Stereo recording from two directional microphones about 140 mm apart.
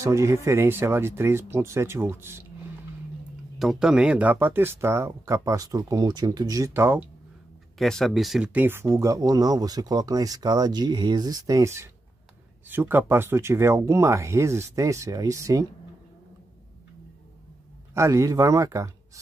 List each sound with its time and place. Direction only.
0.0 s speech: 20° right (ahead or behind)
3.5 s speech: 5° right (ahead or behind)
7.8 s speech: centre (ahead or behind); by 15.6 s 25° right (ahead or behind)
17.9 s speech: 20° right (ahead or behind)